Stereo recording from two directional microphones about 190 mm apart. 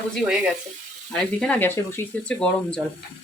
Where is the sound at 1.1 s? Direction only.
5° left (ahead or behind).